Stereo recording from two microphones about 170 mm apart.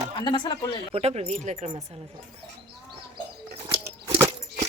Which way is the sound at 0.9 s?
35° right (ahead or behind).